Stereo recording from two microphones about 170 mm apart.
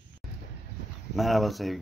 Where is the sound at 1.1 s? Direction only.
Centre (ahead or behind).